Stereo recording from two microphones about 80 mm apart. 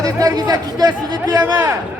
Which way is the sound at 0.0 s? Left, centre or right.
Right.